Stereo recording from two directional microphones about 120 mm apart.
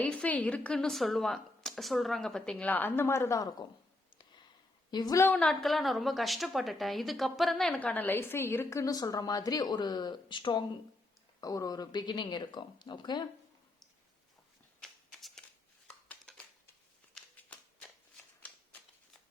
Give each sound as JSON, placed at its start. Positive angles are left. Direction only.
{"t": 0.0, "sound": "a woman's voice", "side_deg": 10}
{"t": 4.9, "sound": "speech", "side_deg": 35}
{"t": 5.2, "sound": "a woman's voice", "side_deg": 10}
{"t": 11.3, "sound": "speech", "side_deg": 30}
{"t": 14.8, "sound": "shuffling cards", "side_deg": 5}
{"t": 17.3, "sound": "shuffling cards", "side_deg": 15}